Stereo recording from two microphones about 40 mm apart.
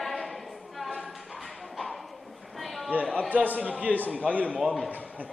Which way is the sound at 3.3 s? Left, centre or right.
Right.